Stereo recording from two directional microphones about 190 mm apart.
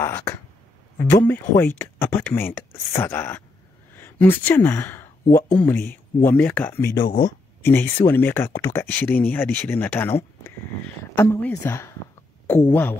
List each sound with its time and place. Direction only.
0.0 s speech: 10° left (ahead or behind)
7.1 s speech: 50° left (ahead or behind)
7.6 s speech: 10° left (ahead or behind)